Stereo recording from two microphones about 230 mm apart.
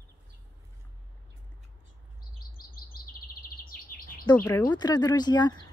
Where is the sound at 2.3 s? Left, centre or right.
Left.